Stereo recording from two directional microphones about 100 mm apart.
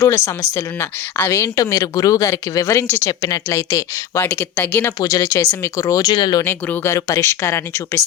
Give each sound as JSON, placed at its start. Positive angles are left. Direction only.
{"t": 0.0, "sound": "speech", "side_deg": 25}
{"t": 1.3, "sound": "speech", "side_deg": 35}
{"t": 4.3, "sound": "speech", "side_deg": 15}
{"t": 4.9, "sound": "speech", "side_deg": 35}
{"t": 6.1, "sound": "speech", "side_deg": 50}
{"t": 6.4, "sound": "speech", "side_deg": 25}